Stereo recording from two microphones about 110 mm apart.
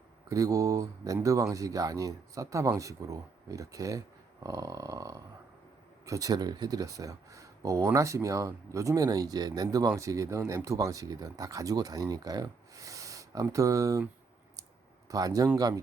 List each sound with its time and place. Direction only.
0.3 s speech: 30° right (ahead or behind)
15.1 s speech: 35° right (ahead or behind)